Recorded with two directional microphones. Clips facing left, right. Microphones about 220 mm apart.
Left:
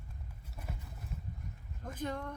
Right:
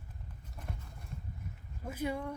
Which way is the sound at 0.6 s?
5° left (ahead or behind).